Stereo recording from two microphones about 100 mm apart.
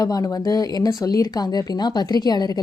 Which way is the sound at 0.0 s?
35° left (ahead or behind).